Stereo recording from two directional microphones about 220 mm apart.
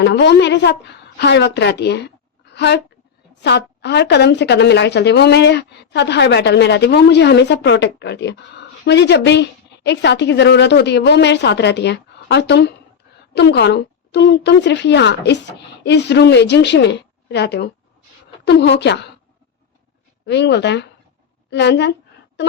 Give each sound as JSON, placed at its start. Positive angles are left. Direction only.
{"t": 0.0, "sound": "a woman's voice", "side_deg": 50}
{"t": 20.2, "sound": "a woman's voice", "side_deg": 50}